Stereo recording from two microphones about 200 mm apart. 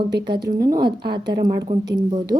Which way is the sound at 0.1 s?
55° right (ahead or behind).